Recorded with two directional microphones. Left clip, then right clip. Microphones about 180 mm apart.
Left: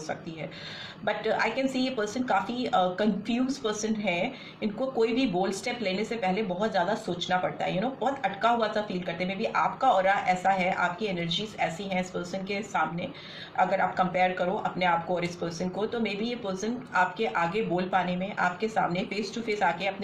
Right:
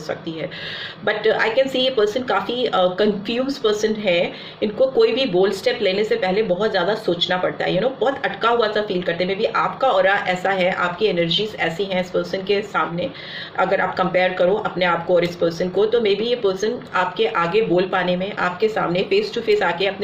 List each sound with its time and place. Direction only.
1.0 s speech: 40° right (ahead or behind)